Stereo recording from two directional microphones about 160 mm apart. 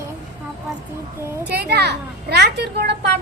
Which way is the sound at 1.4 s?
90° right.